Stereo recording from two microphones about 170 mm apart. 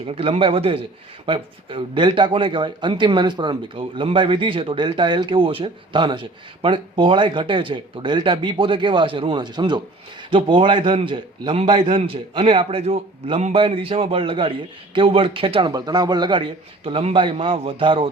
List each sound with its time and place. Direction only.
0.1 s a man's voice: 35° right (ahead or behind)